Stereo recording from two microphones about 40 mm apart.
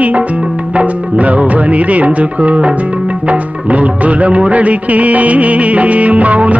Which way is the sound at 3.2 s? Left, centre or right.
Right.